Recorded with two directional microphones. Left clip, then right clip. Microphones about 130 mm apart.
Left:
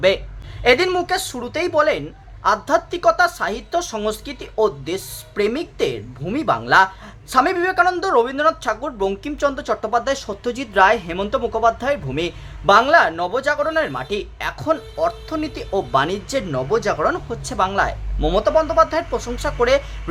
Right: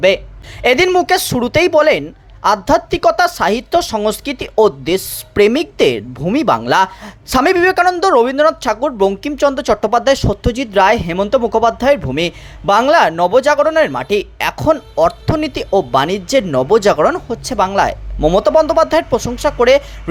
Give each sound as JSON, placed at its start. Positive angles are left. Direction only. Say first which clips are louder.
{"t": 0.6, "sound": "a woman's voice", "louder": "right 5 dB", "side_deg": -50}
{"t": 17.2, "sound": "speech", "louder": "right 5 dB", "side_deg": -30}
{"t": 18.3, "sound": "a woman's voice", "louder": "right 4 dB", "side_deg": -50}